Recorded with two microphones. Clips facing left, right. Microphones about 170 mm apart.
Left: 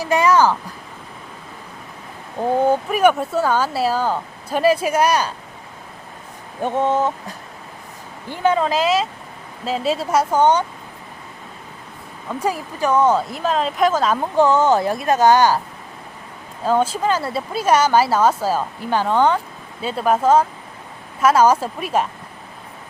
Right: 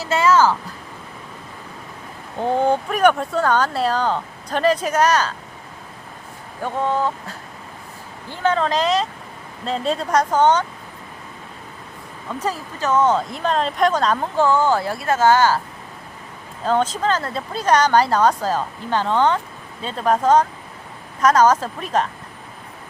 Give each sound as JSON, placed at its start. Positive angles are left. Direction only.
{"t": 0.0, "sound": "speech", "side_deg": 15}
{"t": 2.4, "sound": "speech", "side_deg": 5}
{"t": 6.6, "sound": "speech", "side_deg": 20}
{"t": 8.3, "sound": "speech", "side_deg": 10}
{"t": 12.3, "sound": "speech", "side_deg": 10}
{"t": 14.3, "sound": "speech", "side_deg": 20}
{"t": 16.6, "sound": "speech", "side_deg": 10}